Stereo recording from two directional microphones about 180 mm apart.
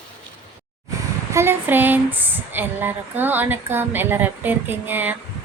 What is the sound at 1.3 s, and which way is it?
Speech, 15° right (ahead or behind).